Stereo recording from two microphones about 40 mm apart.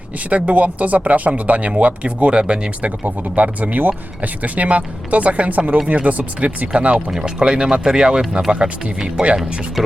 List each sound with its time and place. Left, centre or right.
0.3 s speech: right
3.0 s speech: right
7.1 s speech: centre
9.2 s speech: centre